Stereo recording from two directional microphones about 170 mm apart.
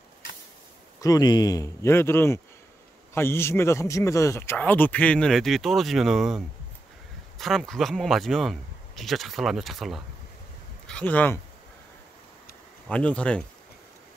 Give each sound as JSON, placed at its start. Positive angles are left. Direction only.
{"t": 1.0, "sound": "speech", "side_deg": 25}
{"t": 12.8, "sound": "speech", "side_deg": 5}